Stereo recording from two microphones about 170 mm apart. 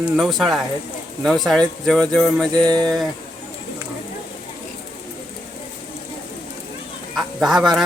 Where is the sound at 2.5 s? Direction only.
25° right (ahead or behind).